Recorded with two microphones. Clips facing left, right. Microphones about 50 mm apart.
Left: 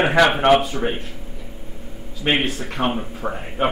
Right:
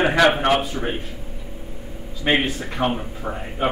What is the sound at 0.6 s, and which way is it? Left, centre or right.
Speech, left.